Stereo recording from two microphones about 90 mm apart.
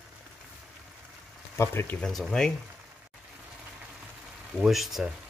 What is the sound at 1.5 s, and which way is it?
Speech, 25° left (ahead or behind).